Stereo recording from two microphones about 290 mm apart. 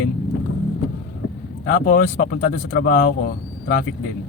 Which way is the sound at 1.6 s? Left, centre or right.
Left.